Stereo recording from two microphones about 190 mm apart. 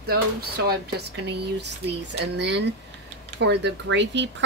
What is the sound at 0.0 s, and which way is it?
Speech, 55° right (ahead or behind).